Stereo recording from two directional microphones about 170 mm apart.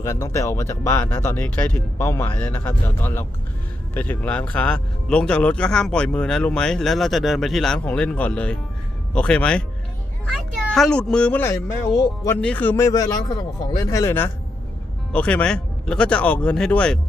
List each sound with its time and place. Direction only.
0.0 s speech: 20° left (ahead or behind)
10.7 s speech: centre (ahead or behind)